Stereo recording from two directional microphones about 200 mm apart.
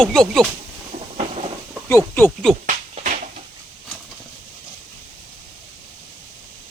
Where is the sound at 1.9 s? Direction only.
10° left (ahead or behind).